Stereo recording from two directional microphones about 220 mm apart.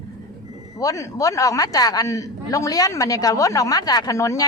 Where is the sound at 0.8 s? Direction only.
15° left (ahead or behind).